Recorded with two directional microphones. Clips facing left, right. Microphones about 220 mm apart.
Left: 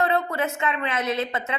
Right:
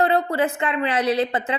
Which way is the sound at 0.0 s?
30° right (ahead or behind).